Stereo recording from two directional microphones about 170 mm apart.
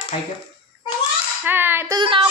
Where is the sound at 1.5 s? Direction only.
10° right (ahead or behind).